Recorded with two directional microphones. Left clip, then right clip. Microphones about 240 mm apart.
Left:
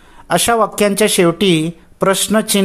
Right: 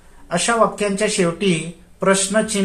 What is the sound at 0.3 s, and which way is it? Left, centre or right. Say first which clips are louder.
Speech: left 3 dB; left.